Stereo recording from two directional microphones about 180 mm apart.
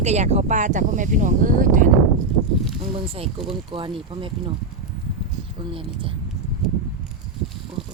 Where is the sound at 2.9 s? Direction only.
30° right (ahead or behind).